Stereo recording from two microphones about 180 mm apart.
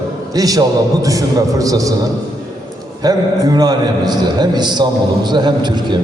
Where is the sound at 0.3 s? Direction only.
20° right (ahead or behind).